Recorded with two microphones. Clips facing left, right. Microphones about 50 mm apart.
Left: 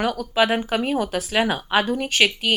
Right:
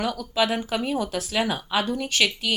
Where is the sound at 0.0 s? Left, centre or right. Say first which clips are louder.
Left 4 dB; left.